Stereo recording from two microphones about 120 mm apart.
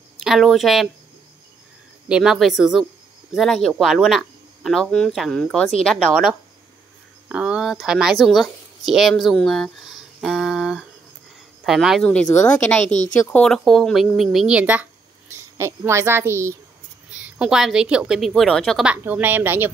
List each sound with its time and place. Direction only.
0.2 s speech: centre (ahead or behind)
2.0 s speech: 5° right (ahead or behind)
7.2 s speech: 10° right (ahead or behind)
12.0 s speech: 10° left (ahead or behind)
12.8 s speech: 80° left
13.3 s speech: 5° left (ahead or behind); by 14.9 s 10° right (ahead or behind)
15.3 s a child's voice: 20° right (ahead or behind)
17.1 s speech: 10° right (ahead or behind)
18.9 s a woman's voice: 15° right (ahead or behind)